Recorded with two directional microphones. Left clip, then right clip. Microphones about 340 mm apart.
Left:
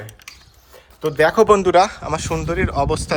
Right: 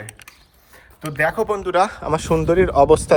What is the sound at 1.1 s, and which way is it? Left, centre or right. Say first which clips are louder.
Speech: left 3 dB; centre.